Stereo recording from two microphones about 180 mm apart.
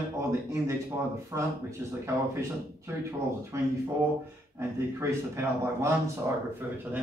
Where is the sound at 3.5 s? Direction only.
15° right (ahead or behind).